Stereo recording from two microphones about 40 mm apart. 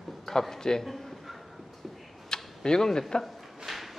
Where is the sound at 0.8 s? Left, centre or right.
Centre.